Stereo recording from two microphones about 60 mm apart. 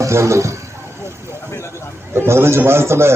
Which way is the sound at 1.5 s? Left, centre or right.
Left.